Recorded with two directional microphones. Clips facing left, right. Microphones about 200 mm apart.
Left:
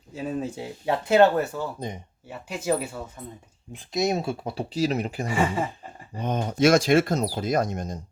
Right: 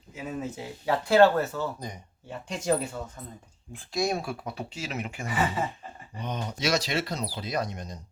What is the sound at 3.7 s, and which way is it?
Speech, 20° left (ahead or behind).